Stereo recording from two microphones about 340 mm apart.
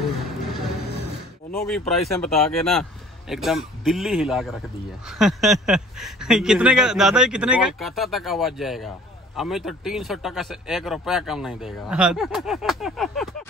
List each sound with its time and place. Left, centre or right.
1.7 s speech: centre